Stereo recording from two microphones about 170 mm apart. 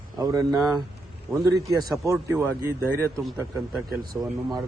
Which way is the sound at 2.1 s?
15° right (ahead or behind).